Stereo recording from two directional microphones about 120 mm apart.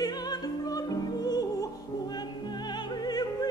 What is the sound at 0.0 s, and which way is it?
Music, 35° left (ahead or behind).